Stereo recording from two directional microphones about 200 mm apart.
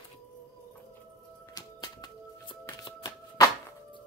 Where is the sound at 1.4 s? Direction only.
20° left (ahead or behind).